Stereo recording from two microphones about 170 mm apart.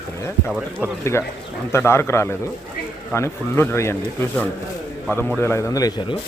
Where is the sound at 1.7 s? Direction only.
15° left (ahead or behind).